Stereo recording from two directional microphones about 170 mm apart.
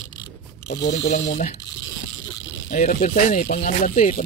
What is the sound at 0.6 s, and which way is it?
Speech, 80° left.